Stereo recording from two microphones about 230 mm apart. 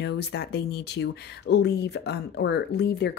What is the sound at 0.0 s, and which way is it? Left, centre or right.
Speech, left.